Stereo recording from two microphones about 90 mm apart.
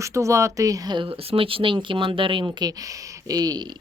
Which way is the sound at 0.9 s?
80° right.